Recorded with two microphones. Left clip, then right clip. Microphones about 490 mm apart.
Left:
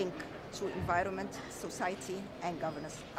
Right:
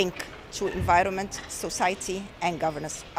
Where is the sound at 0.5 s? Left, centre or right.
Right.